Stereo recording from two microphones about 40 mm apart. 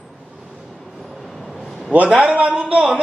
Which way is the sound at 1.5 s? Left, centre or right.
Centre.